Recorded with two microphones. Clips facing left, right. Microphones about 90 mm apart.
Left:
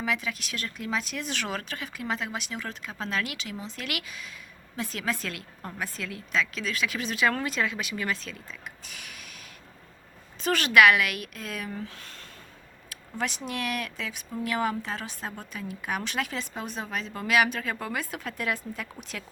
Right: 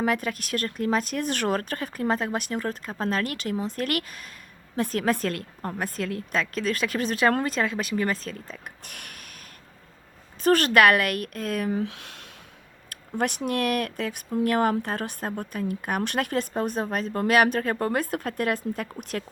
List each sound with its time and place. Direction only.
0.0 s speech: 50° right (ahead or behind)
8.8 s a sound: 55° right (ahead or behind)
10.4 s speech: 45° right (ahead or behind)
11.7 s speech: 70° right (ahead or behind)
12.9 s speech: 55° right (ahead or behind)